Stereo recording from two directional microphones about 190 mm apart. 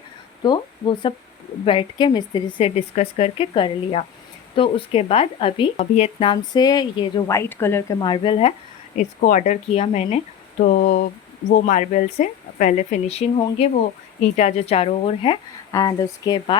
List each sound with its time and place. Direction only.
0.4 s speech: 25° left (ahead or behind)
9.0 s speech: 40° left (ahead or behind)
10.6 s speech: 45° left (ahead or behind); by 16.6 s 20° left (ahead or behind)